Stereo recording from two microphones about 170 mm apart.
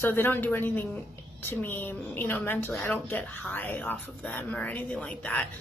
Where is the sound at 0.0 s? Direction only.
15° left (ahead or behind).